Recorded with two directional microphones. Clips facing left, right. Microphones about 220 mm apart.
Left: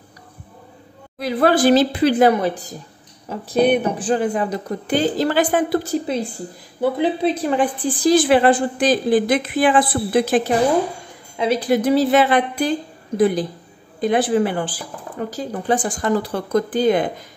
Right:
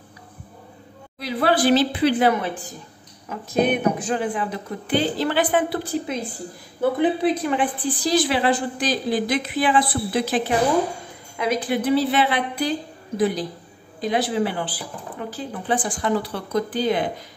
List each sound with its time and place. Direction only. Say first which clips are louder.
1.2 s a woman's voice: left 4 dB; 45° left (ahead or behind)
7.2 s speech: left 2 dB; 35° left (ahead or behind)
8.0 s a woman's voice: left 7 dB; 50° left (ahead or behind)
11.3 s a woman's voice: left 5 dB; 30° left (ahead or behind); by 17.0 s 50° left (ahead or behind)